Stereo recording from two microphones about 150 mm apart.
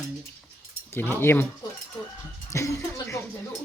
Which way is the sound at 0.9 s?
15° left (ahead or behind).